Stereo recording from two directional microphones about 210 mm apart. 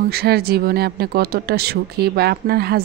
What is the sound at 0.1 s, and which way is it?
Speech, 50° right (ahead or behind).